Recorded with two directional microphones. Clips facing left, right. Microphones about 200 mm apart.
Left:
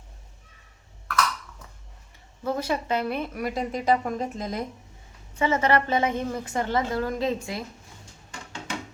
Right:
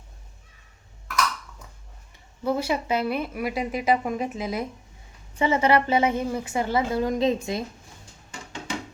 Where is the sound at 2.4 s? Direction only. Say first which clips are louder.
Right 2 dB; 10° right (ahead or behind).